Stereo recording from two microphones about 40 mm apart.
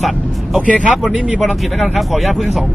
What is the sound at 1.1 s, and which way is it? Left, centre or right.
Speech, right.